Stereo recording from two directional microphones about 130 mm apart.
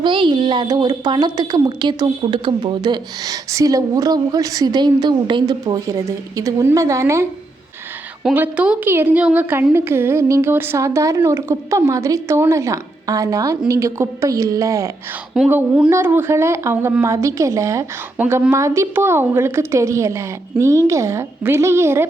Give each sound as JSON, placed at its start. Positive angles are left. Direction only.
{"t": 0.0, "sound": "a woman's voice", "side_deg": -40}
{"t": 8.3, "sound": "a woman's voice", "side_deg": -10}